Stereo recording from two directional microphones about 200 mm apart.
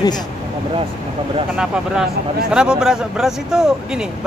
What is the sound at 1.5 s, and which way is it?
Speech, 5° right (ahead or behind).